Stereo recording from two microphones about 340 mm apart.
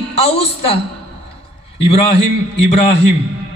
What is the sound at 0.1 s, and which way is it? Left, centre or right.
Speech, centre.